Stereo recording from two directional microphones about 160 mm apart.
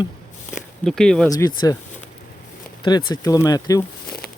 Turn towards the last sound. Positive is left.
turn(degrees=20)  # may be behind; listen again after turning